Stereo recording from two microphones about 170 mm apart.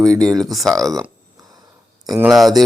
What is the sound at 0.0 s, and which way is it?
Speech, 20° right (ahead or behind).